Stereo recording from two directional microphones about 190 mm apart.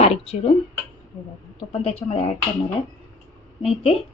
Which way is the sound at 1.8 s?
35° left (ahead or behind).